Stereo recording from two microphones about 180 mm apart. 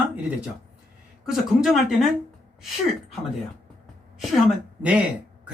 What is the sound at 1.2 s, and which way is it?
Speech, centre (ahead or behind).